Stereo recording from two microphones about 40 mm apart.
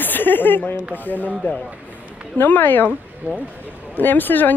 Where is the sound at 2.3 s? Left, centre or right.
Left.